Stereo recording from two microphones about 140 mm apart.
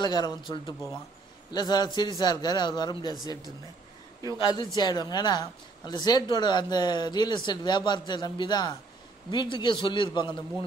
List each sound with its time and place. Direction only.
0.0 s a man's voice: 30° left (ahead or behind)
4.4 s a man's voice: 30° left (ahead or behind)